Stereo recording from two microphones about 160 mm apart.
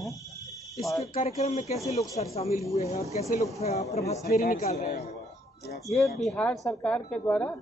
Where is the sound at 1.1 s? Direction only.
45° left (ahead or behind).